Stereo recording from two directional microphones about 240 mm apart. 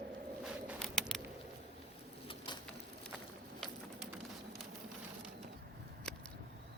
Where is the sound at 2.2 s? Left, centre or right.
Left.